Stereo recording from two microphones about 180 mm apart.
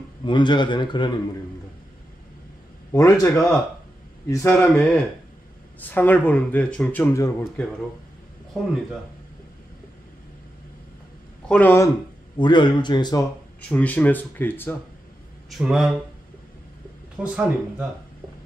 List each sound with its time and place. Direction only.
0.2 s a man's voice: 25° left (ahead or behind)
2.9 s a man's voice: 20° left (ahead or behind)
3.3 s speech: 5° left (ahead or behind)
4.3 s speech: 15° left (ahead or behind)
4.6 s speech: 5° left (ahead or behind)
11.4 s speech: 10° left (ahead or behind)
12.4 s a man's voice: 25° left (ahead or behind)
13.6 s speech: 10° left (ahead or behind)
15.5 s speech: centre (ahead or behind)
17.2 s speech: 5° right (ahead or behind)